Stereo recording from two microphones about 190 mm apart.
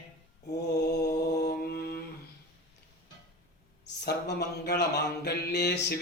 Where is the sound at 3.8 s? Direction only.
60° left (ahead or behind).